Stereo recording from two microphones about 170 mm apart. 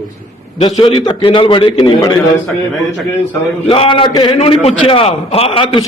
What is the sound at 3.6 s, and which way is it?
A man's voice, 35° left (ahead or behind).